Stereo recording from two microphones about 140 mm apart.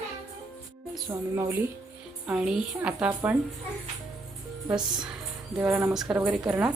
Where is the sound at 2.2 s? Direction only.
5° right (ahead or behind).